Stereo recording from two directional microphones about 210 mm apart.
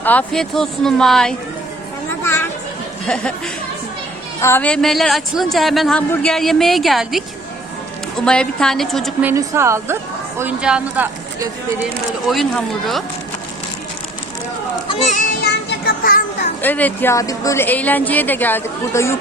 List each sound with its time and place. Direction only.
0.0 s a man's voice: 5° left (ahead or behind)
9.3 s a man's voice: 15° right (ahead or behind); by 13.0 s centre (ahead or behind)
15.4 s music: 50° left (ahead or behind)
16.6 s a woman's voice: 10° left (ahead or behind)